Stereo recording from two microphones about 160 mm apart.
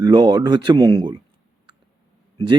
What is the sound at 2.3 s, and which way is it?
Speech, 30° right (ahead or behind).